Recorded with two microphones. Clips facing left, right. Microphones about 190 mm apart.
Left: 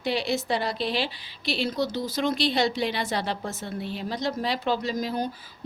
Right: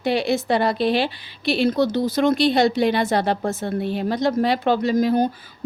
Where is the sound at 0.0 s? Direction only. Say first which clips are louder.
Right 6 dB; 55° right (ahead or behind).